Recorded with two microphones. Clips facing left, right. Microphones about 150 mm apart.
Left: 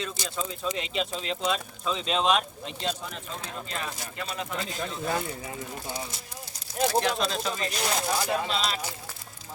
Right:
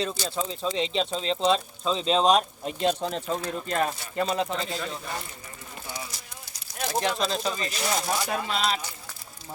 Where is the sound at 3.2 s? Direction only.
50° right (ahead or behind).